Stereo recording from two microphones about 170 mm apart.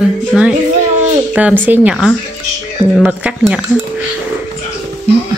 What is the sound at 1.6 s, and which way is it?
Speech, 10° right (ahead or behind).